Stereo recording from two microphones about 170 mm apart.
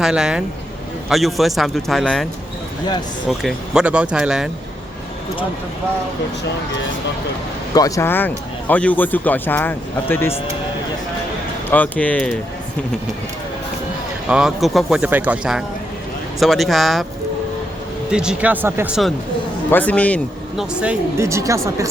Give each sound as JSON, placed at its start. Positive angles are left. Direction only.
{"t": 0.0, "sound": "speech", "side_deg": -5}
{"t": 3.2, "sound": "speech", "side_deg": -5}
{"t": 7.7, "sound": "speech", "side_deg": 20}
{"t": 11.7, "sound": "speech", "side_deg": 10}
{"t": 14.3, "sound": "speech", "side_deg": -5}
{"t": 18.1, "sound": "speech", "side_deg": -5}
{"t": 19.7, "sound": "speech", "side_deg": 10}
{"t": 21.2, "sound": "speech", "side_deg": -15}